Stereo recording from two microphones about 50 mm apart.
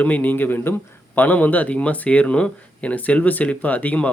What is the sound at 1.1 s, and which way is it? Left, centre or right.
Speech, left.